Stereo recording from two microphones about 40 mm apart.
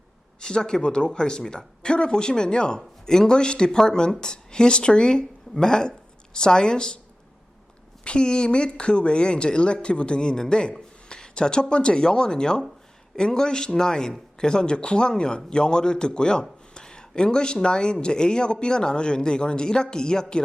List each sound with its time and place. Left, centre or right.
0.3 s speech: centre
8.0 s a man's voice: left